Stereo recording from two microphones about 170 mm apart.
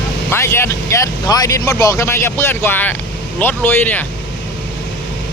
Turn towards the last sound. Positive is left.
turn(degrees=10)  # may be behind; listen again after turning